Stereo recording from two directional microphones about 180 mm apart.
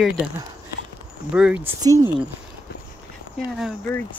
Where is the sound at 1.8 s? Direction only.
20° right (ahead or behind).